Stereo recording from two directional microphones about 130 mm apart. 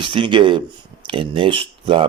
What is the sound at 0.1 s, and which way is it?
Speech, 40° right (ahead or behind).